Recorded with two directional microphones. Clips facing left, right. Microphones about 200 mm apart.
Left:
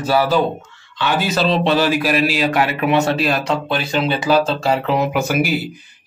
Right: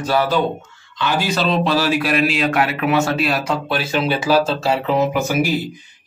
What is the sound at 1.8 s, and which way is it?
A man's voice, centre (ahead or behind).